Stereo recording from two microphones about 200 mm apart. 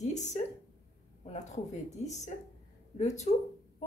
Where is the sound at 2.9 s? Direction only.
35° left (ahead or behind).